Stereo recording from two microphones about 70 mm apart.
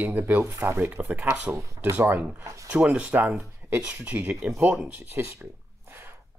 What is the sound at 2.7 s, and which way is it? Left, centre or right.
Speech, right.